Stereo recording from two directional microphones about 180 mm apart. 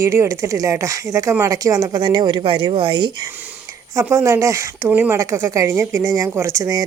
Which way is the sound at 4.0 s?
15° right (ahead or behind).